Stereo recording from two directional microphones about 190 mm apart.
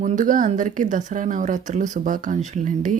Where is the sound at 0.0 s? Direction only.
40° right (ahead or behind).